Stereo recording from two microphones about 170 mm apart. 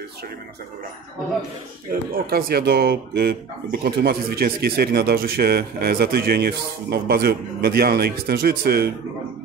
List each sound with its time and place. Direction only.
1.9 s speech: 60° right (ahead or behind)